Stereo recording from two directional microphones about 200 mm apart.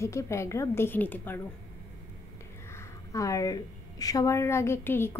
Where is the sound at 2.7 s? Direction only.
15° left (ahead or behind).